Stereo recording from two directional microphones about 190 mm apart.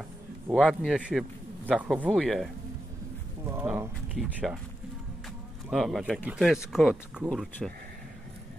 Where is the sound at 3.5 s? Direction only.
10° right (ahead or behind).